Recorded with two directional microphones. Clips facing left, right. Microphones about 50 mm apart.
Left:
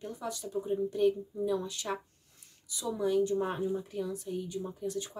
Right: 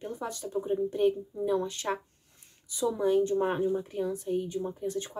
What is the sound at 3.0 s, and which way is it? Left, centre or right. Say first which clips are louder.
Speech: right 2 dB; right.